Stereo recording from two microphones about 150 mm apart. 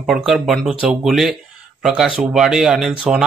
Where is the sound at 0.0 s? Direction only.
5° right (ahead or behind).